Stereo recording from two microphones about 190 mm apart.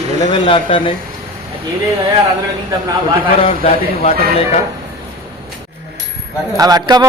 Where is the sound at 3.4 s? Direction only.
30° left (ahead or behind).